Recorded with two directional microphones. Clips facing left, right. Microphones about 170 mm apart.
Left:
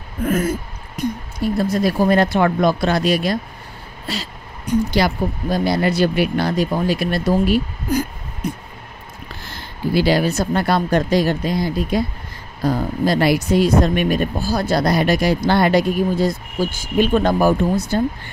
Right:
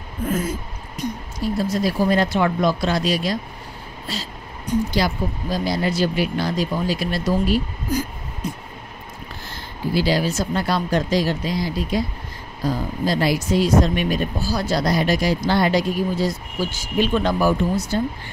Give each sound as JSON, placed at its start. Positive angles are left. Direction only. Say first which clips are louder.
{"t": 0.2, "sound": "a sound", "louder": "left 4 dB", "side_deg": 70}
{"t": 0.9, "sound": "speech", "louder": "left 4 dB", "side_deg": 60}
{"t": 4.9, "sound": "speech", "louder": "left 3 dB", "side_deg": 65}
{"t": 9.9, "sound": "speech", "louder": "left 4 dB", "side_deg": 60}